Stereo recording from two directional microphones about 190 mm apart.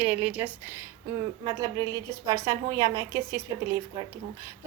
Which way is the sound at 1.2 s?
20° right (ahead or behind).